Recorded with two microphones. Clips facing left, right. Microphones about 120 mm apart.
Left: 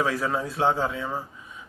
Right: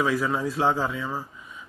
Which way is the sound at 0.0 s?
30° left (ahead or behind).